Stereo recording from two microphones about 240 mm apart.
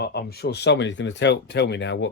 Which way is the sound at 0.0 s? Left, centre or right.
Left.